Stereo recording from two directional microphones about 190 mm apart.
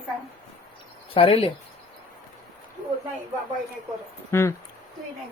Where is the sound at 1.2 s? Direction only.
30° left (ahead or behind).